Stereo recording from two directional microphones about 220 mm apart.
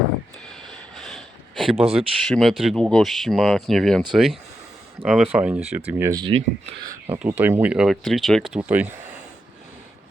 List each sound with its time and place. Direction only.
0.4 s a sound: centre (ahead or behind)
1.7 s speech: 25° right (ahead or behind)
2.0 s speech: centre (ahead or behind)
5.0 s speech: centre (ahead or behind); by 7.0 s 25° right (ahead or behind)
7.1 s speech: 10° right (ahead or behind)